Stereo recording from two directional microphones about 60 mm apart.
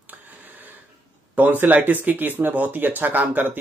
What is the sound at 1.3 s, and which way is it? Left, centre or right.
Speech, right.